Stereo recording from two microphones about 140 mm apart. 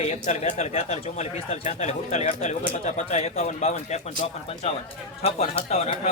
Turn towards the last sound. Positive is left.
turn(degrees=45)  # may be behind; listen again after turning